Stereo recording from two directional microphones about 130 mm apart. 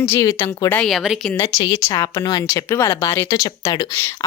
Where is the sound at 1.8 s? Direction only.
25° left (ahead or behind).